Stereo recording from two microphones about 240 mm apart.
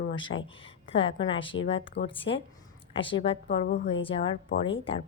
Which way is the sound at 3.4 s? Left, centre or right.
Left.